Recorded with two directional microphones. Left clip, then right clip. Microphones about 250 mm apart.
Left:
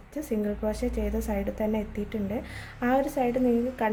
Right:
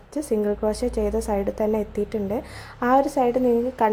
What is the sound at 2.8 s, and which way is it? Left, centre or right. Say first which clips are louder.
Speech: right 7 dB; centre.